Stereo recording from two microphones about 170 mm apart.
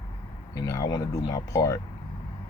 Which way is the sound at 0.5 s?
20° left (ahead or behind).